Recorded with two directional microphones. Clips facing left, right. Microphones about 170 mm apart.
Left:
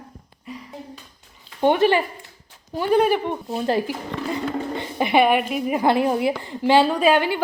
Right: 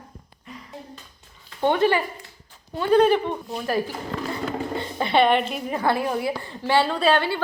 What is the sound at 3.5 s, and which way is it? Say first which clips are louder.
Speech: left 5 dB; 30° left (ahead or behind).